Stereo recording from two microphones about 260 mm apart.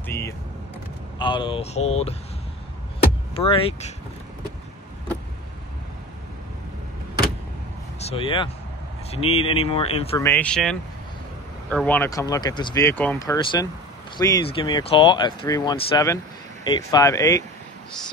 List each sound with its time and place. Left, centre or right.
1.2 s speech: centre
3.3 s speech: left
8.0 s speech: left
10.2 s speech: centre